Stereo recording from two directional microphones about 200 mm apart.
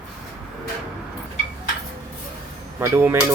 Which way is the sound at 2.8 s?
10° right (ahead or behind).